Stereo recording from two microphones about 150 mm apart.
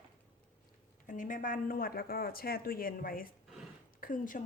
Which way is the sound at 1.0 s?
60° left (ahead or behind).